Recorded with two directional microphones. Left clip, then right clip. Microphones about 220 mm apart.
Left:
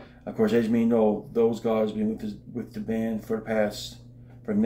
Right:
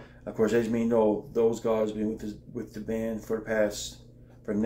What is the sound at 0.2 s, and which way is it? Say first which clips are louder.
Speech: left 2 dB; 5° right (ahead or behind).